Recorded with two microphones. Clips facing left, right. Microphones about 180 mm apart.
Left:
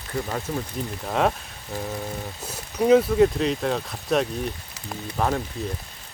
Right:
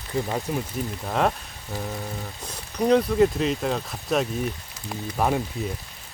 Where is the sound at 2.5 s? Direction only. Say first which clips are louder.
Left 3 dB; 5° left (ahead or behind).